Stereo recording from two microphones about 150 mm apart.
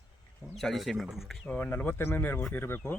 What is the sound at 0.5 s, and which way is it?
Speech, centre (ahead or behind).